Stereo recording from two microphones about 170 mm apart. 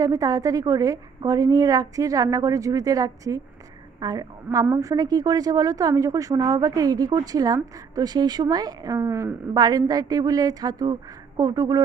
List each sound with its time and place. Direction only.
0.0 s a woman's voice: 20° right (ahead or behind)